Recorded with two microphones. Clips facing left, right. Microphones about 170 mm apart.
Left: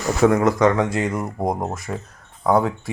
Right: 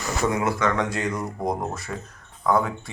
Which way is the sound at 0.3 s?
45° left (ahead or behind).